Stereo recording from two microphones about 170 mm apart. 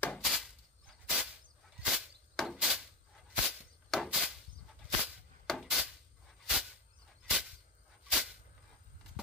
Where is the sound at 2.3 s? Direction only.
Centre (ahead or behind).